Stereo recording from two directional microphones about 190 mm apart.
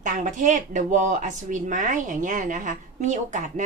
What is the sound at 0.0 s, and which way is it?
A woman's voice, 40° right (ahead or behind).